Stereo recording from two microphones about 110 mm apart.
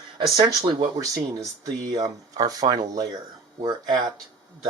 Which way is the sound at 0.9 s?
30° right (ahead or behind).